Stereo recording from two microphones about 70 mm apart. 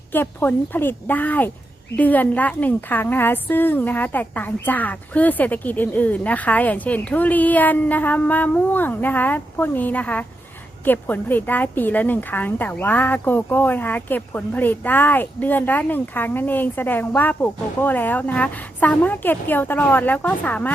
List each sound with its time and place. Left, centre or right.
0.1 s a woman's voice: left